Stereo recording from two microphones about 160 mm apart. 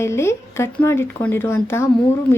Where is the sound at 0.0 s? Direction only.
15° left (ahead or behind).